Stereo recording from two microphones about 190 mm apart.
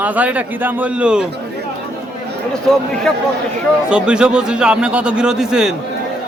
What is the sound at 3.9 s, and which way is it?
A man's voice, 5° right (ahead or behind).